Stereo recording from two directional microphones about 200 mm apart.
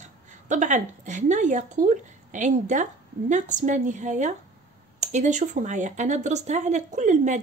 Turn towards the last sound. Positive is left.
turn(degrees=-35)  # may be behind; listen again after turning